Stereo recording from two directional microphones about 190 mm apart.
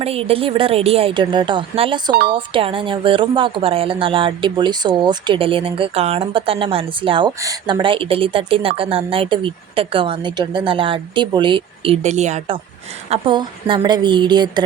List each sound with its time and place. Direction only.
0.0 s a woman's voice: 30° right (ahead or behind)
13.1 s a woman's voice: 25° right (ahead or behind)